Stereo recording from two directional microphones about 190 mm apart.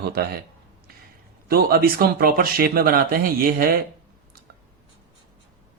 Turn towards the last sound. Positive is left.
turn(degrees=-50)  # may be behind; listen again after turning